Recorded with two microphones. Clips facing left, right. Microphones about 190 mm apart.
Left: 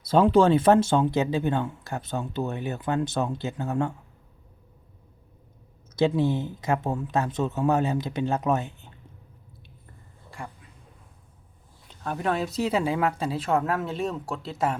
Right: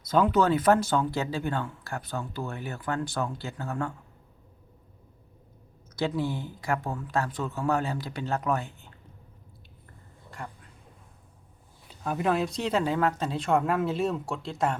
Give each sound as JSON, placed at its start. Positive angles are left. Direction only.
{"t": 0.0, "sound": "speech", "side_deg": 30}
{"t": 6.0, "sound": "speech", "side_deg": 25}
{"t": 11.9, "sound": "speech", "side_deg": -5}